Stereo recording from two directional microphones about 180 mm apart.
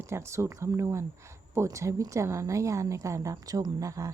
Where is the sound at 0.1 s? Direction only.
15° right (ahead or behind).